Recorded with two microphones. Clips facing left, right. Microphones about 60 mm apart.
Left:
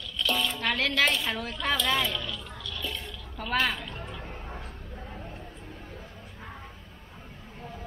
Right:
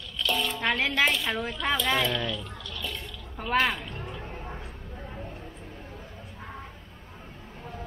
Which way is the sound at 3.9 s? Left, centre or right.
Right.